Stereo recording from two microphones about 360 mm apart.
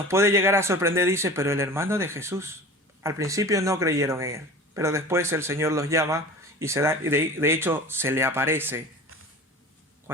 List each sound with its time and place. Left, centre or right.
0.1 s speech: centre